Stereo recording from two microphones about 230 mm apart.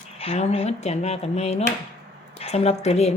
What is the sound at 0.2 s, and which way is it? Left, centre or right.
Speech, left.